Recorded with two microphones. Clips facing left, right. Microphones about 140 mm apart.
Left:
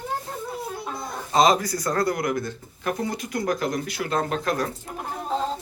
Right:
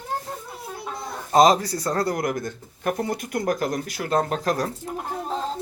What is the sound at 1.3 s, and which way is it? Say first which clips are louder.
Speech: right 3 dB; 40° right (ahead or behind).